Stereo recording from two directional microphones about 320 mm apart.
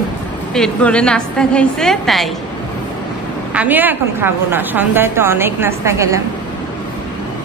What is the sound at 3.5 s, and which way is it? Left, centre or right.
A woman's voice, centre.